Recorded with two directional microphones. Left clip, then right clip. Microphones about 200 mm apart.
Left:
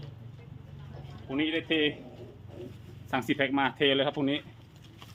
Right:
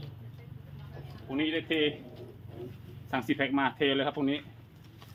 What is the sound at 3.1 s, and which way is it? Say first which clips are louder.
Speech: left 2 dB; 55° left (ahead or behind).